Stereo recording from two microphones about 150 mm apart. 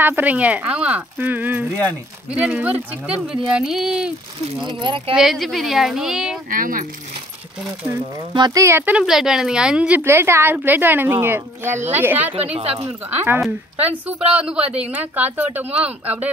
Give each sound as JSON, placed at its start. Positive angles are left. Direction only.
{"t": 0.0, "sound": "speech", "side_deg": -10}
{"t": 4.6, "sound": "speech", "side_deg": -35}
{"t": 5.1, "sound": "speech", "side_deg": 0}
{"t": 6.5, "sound": "speech", "side_deg": -70}
{"t": 7.6, "sound": "speech", "side_deg": -15}
{"t": 8.3, "sound": "speech", "side_deg": -30}
{"t": 13.4, "sound": "speech", "side_deg": -10}